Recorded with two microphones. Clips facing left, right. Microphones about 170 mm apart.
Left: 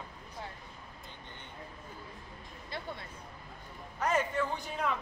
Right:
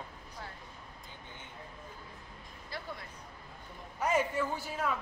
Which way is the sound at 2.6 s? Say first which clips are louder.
Left 2 dB; 25° left (ahead or behind).